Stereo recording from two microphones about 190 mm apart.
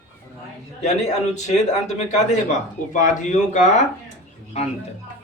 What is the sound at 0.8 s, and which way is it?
A man's voice, 40° left (ahead or behind).